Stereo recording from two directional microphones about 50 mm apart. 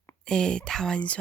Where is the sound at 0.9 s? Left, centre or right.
Left.